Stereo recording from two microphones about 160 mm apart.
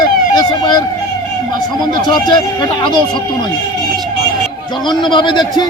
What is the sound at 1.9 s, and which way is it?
Speech, 30° left (ahead or behind).